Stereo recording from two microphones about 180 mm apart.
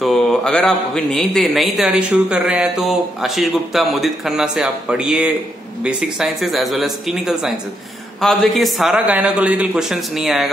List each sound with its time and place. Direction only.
0.0 s a man's voice: 5° left (ahead or behind)